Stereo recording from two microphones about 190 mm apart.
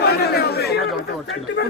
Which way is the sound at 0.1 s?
55° left (ahead or behind).